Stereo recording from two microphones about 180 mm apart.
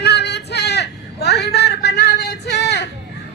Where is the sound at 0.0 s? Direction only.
70° left (ahead or behind).